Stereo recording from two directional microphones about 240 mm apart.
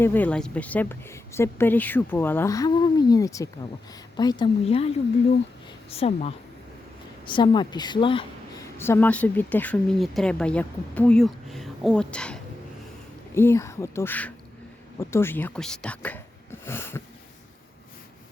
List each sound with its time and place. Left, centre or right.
0.0 s a woman's voice: centre; by 4.9 s left
5.9 s a woman's voice: left
8.8 s speech: centre